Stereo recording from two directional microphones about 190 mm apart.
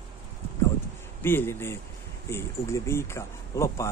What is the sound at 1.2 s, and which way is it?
Speech, 10° left (ahead or behind).